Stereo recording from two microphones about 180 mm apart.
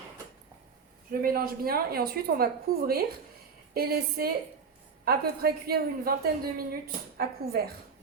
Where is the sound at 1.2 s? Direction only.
55° right (ahead or behind).